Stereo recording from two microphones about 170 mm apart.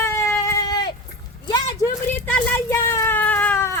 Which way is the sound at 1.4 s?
20° left (ahead or behind).